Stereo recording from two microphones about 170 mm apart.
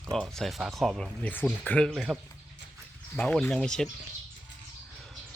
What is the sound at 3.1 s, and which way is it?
Speech, 10° left (ahead or behind).